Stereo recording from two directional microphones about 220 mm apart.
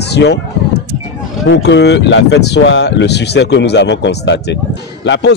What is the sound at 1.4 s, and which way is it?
Speech, 55° left (ahead or behind).